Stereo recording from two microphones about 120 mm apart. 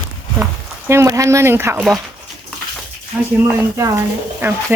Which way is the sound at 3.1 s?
10° right (ahead or behind).